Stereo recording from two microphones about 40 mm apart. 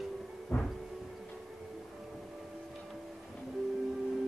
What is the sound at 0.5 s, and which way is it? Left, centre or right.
Music, left.